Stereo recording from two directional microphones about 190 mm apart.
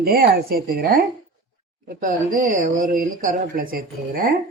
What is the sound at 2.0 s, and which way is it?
Speech, 45° right (ahead or behind).